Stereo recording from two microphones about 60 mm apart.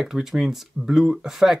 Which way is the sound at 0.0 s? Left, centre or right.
Centre.